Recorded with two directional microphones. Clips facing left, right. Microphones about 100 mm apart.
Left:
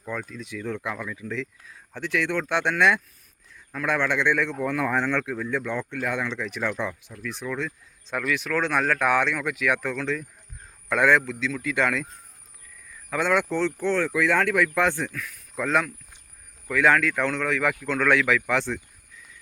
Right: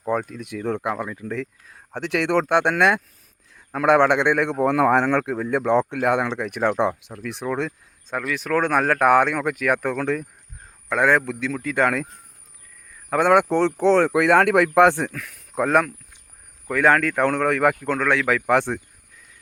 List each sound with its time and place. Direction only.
0.1 s a man's voice: 55° right (ahead or behind)
2.5 s speech: 55° right (ahead or behind)
3.8 s a man's voice: 70° right (ahead or behind)
7.4 s speech: 40° right (ahead or behind)
10.8 s a man's voice: 30° right (ahead or behind)
11.3 s a man's voice: 60° right (ahead or behind)
11.5 s speech: 40° right (ahead or behind)
13.1 s a man's voice: 55° right (ahead or behind); by 14.7 s 75° right (ahead or behind)
14.8 s a man's voice: 60° right (ahead or behind)
17.9 s speech: 30° right (ahead or behind)
18.3 s speech: 45° right (ahead or behind)